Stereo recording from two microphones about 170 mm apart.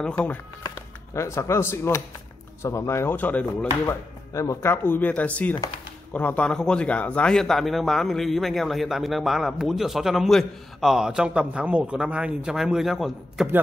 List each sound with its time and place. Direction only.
0.7 s speech: 15° left (ahead or behind); by 13.5 s centre (ahead or behind)